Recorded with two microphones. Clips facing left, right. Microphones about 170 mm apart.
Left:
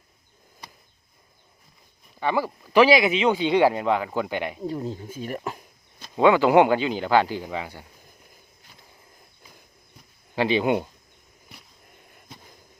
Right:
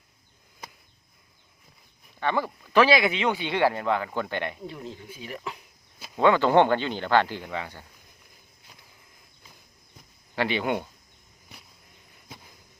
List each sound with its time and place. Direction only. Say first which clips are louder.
2.1 s speech: left 2 dB; 10° left (ahead or behind)
4.6 s speech: left 8 dB; 40° left (ahead or behind)
6.1 s speech: left 3 dB; 10° left (ahead or behind)
10.3 s speech: left 5 dB; 15° left (ahead or behind)